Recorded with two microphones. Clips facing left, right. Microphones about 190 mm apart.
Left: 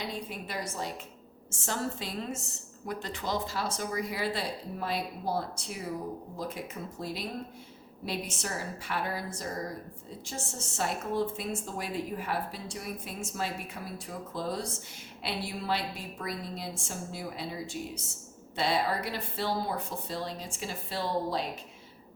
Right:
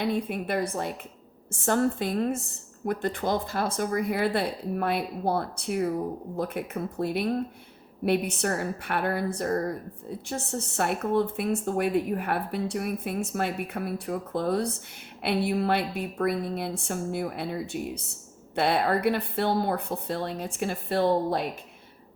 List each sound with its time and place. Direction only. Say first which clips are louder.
0.0 s a woman's voice: right 10 dB; 55° right (ahead or behind)